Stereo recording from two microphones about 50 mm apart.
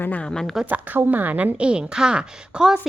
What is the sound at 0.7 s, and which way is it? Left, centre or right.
Speech, right.